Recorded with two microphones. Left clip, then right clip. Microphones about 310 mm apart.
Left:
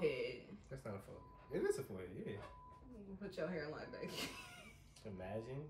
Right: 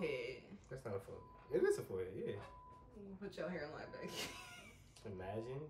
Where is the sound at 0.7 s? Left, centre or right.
Centre.